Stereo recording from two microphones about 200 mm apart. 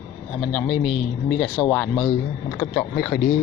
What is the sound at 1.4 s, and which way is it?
Speech, 5° left (ahead or behind).